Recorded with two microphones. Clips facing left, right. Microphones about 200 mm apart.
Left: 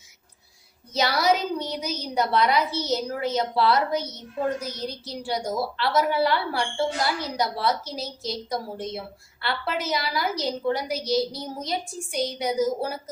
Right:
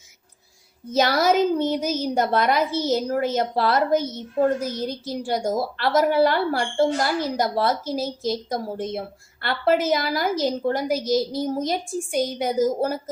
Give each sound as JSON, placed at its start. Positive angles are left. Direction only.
{"t": 0.9, "sound": "a woman's voice", "side_deg": -50}